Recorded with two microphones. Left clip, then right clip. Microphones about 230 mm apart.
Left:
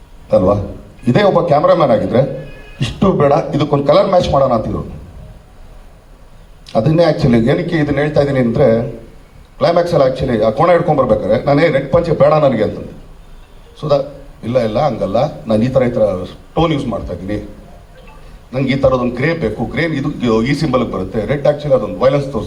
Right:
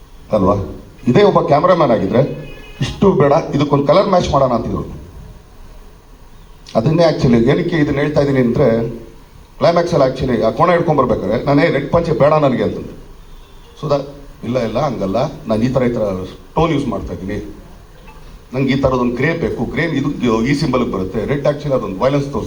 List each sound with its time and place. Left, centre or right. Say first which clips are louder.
0.3 s a man's voice: left 3 dB; left
6.7 s a man's voice: left 1 dB; left
13.7 s a man's voice: left 3 dB; left
18.5 s a man's voice: left 2 dB; left